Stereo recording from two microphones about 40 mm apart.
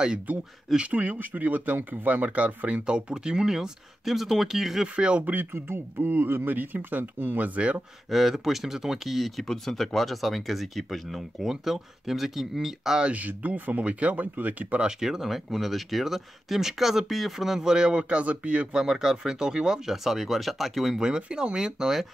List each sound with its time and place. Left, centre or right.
0.7 s speech: right; by 4.8 s centre
4.8 s speech: right
5.2 s speech: right
8.1 s speech: centre
9.4 s speech: centre
13.0 s speech: right
14.2 s speech: right
14.8 s speech: centre; by 18.8 s right
18.8 s speech: centre
19.9 s speech: centre
21.0 s speech: right